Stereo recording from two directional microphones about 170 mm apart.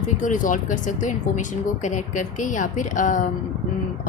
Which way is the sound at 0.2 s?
50° left (ahead or behind).